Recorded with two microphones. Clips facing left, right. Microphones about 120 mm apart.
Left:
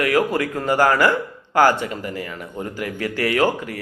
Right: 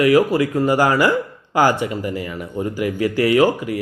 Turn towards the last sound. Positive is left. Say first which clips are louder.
# right 4 dB
turn(degrees=-15)  # may be behind; listen again after turning